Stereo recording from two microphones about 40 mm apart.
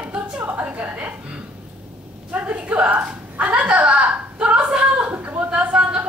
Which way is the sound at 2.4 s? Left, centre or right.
Right.